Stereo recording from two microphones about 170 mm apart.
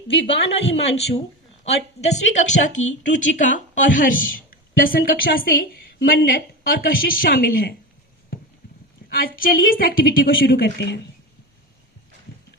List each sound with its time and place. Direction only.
0.3 s speech: 90° left
1.6 s a woman's voice: 40° left (ahead or behind); by 7.8 s 60° left (ahead or behind)
9.0 s a woman's voice: 60° left (ahead or behind); by 11.0 s 75° left (ahead or behind)